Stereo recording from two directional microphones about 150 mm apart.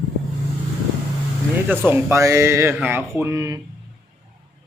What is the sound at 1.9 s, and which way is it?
Speech, 15° right (ahead or behind).